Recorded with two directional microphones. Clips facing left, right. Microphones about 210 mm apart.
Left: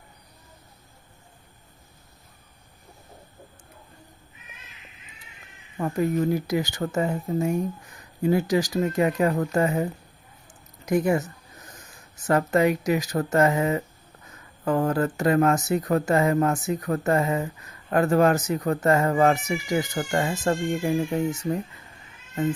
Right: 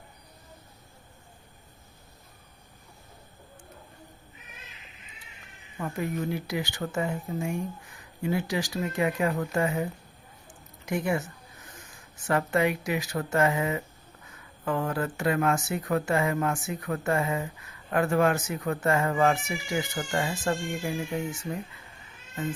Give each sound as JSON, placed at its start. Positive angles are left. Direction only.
{"t": 5.8, "sound": "speech", "side_deg": 40}
{"t": 10.8, "sound": "a sound", "side_deg": 40}
{"t": 12.1, "sound": "speech", "side_deg": 40}